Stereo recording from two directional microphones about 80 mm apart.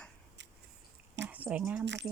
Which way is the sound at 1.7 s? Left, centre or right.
Centre.